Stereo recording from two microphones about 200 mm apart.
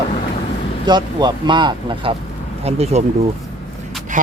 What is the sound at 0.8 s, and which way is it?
A man's voice, 20° right (ahead or behind).